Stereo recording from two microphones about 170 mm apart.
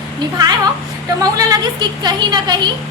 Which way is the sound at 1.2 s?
20° right (ahead or behind).